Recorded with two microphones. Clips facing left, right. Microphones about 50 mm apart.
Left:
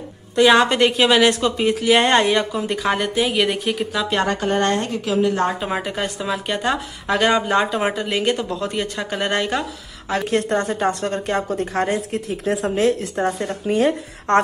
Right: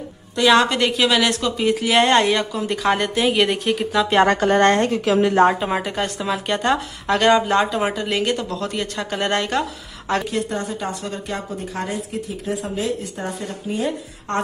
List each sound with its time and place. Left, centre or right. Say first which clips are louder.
0.4 s a woman's voice: left 2 dB; left
2.3 s speech: left 2 dB; centre
2.9 s speech: right 2 dB; centre
4.4 s speech: right 4 dB; right
4.6 s speech: right 4 dB; right
5.3 s a woman's voice: right 6 dB; right
5.6 s a woman's voice: right 1 dB; centre
10.3 s speech: left 4 dB; left